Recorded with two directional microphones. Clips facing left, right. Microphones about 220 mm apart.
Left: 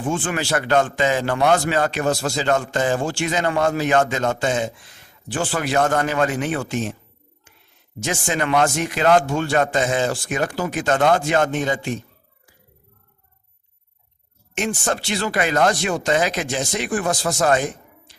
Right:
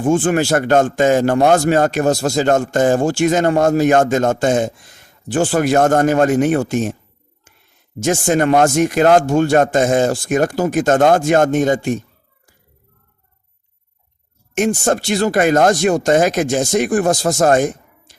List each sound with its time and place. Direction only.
0.0 s speech: 45° right (ahead or behind)
7.9 s speech: 45° right (ahead or behind)
14.5 s speech: 45° right (ahead or behind)